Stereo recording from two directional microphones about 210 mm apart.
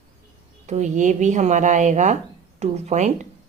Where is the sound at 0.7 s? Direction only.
35° right (ahead or behind).